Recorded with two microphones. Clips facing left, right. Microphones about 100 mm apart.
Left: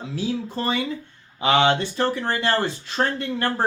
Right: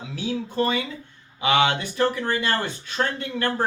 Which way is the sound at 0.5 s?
30° left (ahead or behind).